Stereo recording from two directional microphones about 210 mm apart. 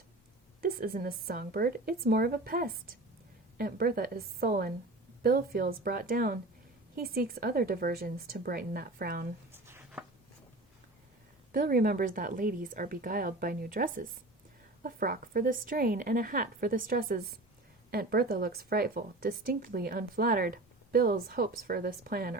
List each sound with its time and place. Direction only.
0.6 s a woman's voice: 45° right (ahead or behind)
9.5 s writing: 10° right (ahead or behind)
11.5 s a woman's voice: 45° right (ahead or behind)